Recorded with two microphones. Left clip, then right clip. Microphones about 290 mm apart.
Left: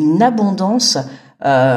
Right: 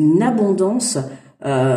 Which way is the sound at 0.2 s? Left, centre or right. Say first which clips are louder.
Left 2 dB; left.